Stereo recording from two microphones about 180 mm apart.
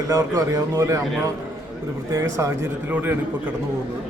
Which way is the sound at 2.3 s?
15° right (ahead or behind).